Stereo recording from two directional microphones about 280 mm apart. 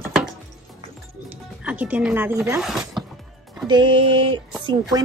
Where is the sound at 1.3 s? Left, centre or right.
Centre.